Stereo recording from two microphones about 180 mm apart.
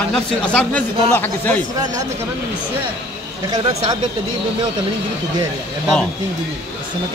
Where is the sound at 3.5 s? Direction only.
25° right (ahead or behind).